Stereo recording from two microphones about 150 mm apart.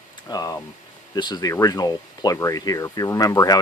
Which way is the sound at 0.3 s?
25° left (ahead or behind).